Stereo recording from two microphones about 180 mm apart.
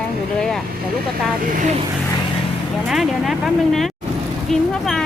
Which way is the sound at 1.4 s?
50° right (ahead or behind).